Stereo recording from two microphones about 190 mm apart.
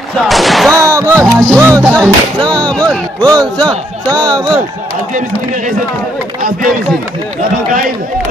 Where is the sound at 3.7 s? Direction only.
20° right (ahead or behind).